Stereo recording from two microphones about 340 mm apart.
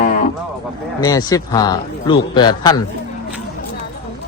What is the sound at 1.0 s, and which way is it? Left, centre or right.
Speech, centre.